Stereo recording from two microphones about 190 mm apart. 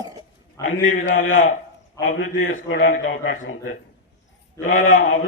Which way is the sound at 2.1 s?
90° left.